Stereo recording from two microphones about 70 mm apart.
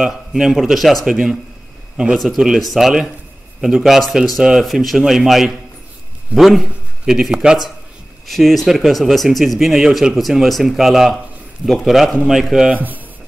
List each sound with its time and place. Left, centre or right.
0.0 s a man's voice: centre
12.7 s speech: right